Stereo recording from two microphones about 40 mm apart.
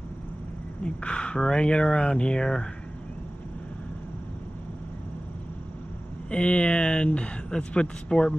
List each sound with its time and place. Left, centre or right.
0.8 s speech: left
6.3 s speech: left